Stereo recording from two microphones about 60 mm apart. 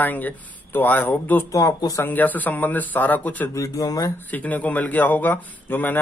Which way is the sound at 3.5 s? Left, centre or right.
Left.